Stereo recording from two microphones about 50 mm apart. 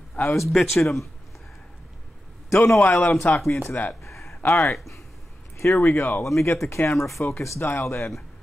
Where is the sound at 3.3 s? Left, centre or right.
Left.